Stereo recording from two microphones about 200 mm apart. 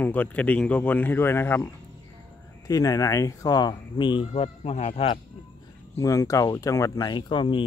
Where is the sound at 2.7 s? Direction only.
15° left (ahead or behind).